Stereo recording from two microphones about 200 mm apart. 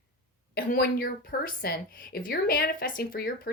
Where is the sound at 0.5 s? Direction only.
45° left (ahead or behind).